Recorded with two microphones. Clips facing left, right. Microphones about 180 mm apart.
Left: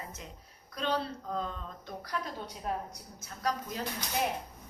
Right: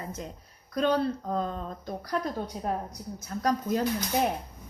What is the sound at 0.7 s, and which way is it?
A woman's voice, 45° right (ahead or behind).